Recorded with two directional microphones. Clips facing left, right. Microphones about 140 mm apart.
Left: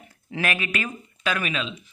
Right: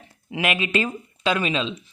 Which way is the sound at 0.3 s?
20° right (ahead or behind).